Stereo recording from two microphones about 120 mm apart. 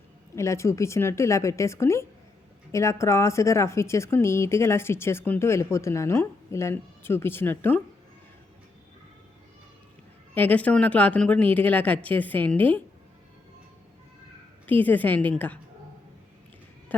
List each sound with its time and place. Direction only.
0.3 s speech: 25° left (ahead or behind)
10.3 s speech: 15° left (ahead or behind)
14.7 s speech: 15° left (ahead or behind)